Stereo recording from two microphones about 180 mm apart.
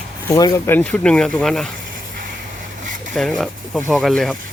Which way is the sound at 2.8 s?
45° right (ahead or behind).